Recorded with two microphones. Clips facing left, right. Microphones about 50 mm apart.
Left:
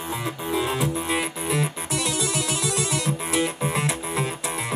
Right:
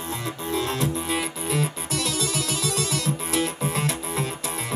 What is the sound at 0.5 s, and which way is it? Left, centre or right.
Music, centre.